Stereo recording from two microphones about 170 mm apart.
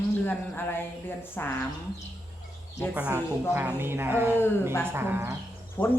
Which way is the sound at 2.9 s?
10° right (ahead or behind).